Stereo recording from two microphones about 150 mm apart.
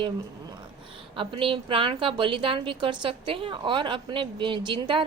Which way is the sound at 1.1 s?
35° right (ahead or behind).